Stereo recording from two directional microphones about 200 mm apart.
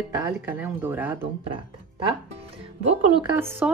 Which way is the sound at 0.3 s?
10° right (ahead or behind).